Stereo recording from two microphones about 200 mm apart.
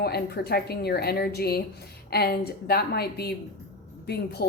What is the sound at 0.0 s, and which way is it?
A woman's voice, 50° left (ahead or behind).